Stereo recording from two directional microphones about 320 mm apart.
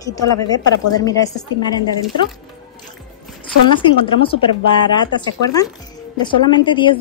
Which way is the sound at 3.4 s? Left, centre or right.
Centre.